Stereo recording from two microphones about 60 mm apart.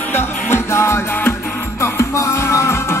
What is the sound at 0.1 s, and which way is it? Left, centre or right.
Music, left.